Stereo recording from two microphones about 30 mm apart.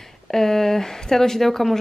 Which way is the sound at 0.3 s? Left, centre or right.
Centre.